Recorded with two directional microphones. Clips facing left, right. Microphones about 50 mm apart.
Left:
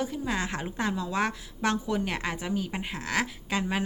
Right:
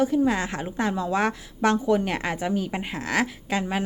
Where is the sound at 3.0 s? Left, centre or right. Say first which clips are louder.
Right 4 dB; right.